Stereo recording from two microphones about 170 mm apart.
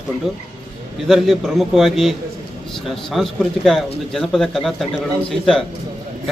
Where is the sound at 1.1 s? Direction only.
Centre (ahead or behind).